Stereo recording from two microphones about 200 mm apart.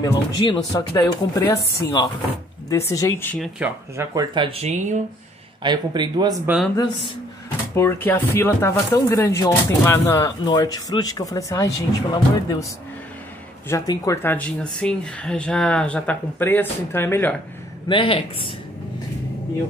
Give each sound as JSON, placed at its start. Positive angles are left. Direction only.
{"t": 0.0, "sound": "speech", "side_deg": 20}
{"t": 2.7, "sound": "speech", "side_deg": 15}
{"t": 3.5, "sound": "speech", "side_deg": -10}
{"t": 5.6, "sound": "speech", "side_deg": -20}
{"t": 6.4, "sound": "speech", "side_deg": -5}
{"t": 7.7, "sound": "speech", "side_deg": 10}
{"t": 13.7, "sound": "speech", "side_deg": 15}
{"t": 17.8, "sound": "speech", "side_deg": 25}